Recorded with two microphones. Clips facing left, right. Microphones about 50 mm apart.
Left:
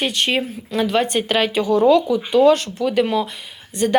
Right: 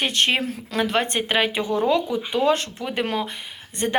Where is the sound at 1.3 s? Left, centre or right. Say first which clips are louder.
Left 4 dB; right.